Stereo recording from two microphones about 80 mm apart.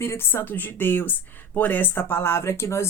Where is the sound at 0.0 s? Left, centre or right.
Left.